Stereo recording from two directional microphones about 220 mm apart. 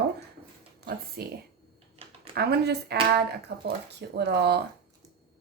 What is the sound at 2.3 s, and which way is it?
Speech, 45° right (ahead or behind).